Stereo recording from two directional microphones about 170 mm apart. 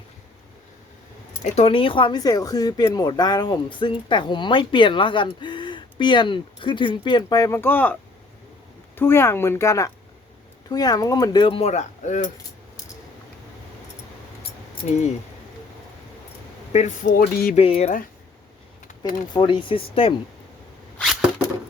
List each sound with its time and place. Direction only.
1.5 s speech: 35° left (ahead or behind); by 7.9 s 10° left (ahead or behind)
9.0 s speech: 15° left (ahead or behind); by 12.3 s 45° left (ahead or behind)
16.7 s speech: 45° left (ahead or behind)
17.5 s speech: 35° left (ahead or behind)
19.3 s speech: 30° left (ahead or behind)
21.0 s a sound: 5° right (ahead or behind)